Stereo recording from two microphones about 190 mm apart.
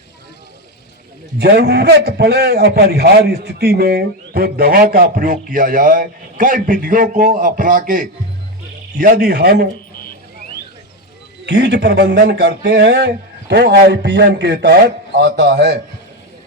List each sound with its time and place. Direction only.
1.4 s a man's voice: 60° right (ahead or behind)
11.4 s speech: 65° right (ahead or behind)